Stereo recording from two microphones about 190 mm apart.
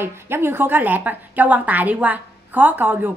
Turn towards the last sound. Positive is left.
turn(degrees=-10)  # may be behind; listen again after turning